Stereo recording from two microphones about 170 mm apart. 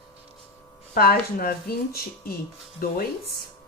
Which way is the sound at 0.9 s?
60° left (ahead or behind).